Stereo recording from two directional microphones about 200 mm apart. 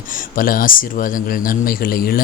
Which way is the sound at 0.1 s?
45° left (ahead or behind).